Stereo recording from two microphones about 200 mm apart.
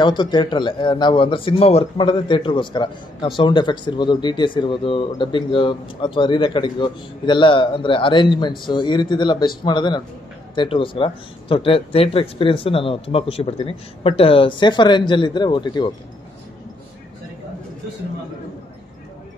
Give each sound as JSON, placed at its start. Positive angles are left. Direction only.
{"t": 0.0, "sound": "speech", "side_deg": 25}